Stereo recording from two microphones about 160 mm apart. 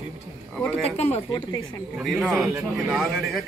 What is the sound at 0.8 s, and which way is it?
Speech, 40° left (ahead or behind).